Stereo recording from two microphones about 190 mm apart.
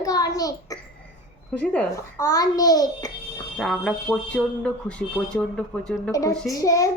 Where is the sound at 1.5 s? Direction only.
5° left (ahead or behind).